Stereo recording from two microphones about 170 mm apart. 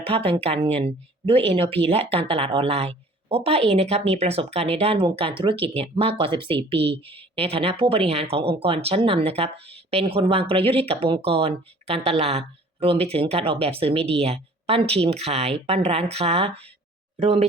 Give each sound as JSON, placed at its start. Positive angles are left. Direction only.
{"t": 0.1, "sound": "speech", "side_deg": -35}